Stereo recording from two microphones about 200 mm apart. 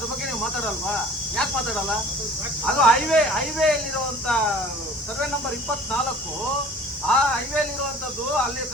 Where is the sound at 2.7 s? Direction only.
5° left (ahead or behind).